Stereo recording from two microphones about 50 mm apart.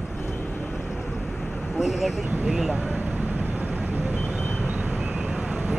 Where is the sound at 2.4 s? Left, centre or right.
Centre.